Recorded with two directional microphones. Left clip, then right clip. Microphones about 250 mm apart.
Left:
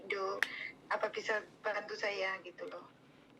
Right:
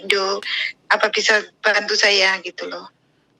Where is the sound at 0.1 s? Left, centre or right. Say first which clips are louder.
Right 17 dB; right.